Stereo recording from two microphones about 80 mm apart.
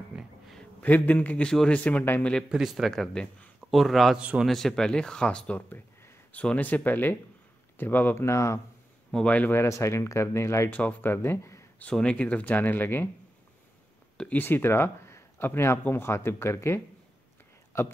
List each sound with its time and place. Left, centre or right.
0.1 s a sound: centre
0.8 s a man's voice: left
2.5 s speech: centre
4.2 s a man's voice: centre
4.5 s a man's voice: centre; by 8.5 s left
9.1 s speech: centre; by 10.7 s left
10.7 s a man's voice: centre; by 11.6 s left
11.9 s a man's voice: centre
14.1 s speech: centre
14.4 s speech: left